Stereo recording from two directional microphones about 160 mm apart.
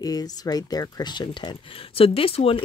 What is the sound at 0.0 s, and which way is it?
Speech, 25° left (ahead or behind).